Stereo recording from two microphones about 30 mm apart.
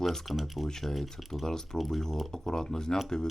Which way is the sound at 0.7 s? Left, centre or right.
Centre.